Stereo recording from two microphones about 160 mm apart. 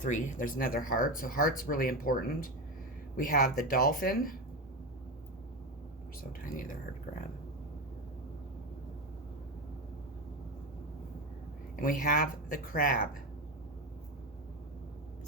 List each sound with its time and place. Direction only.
0.0 s speech: 50° left (ahead or behind)
11.8 s speech: 60° left (ahead or behind)